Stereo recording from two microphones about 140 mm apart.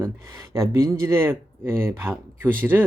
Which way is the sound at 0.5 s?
20° right (ahead or behind).